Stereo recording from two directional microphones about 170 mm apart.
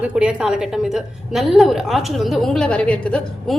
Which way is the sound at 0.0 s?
5° right (ahead or behind).